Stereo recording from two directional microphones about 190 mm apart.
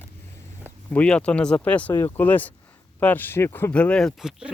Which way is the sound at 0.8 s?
5° left (ahead or behind).